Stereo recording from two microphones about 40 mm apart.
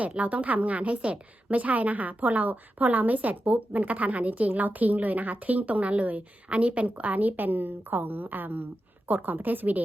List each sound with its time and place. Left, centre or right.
0.0 s a woman's voice: right